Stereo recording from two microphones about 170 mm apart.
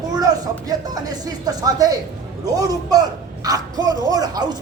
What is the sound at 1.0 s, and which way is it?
Speech, 20° right (ahead or behind).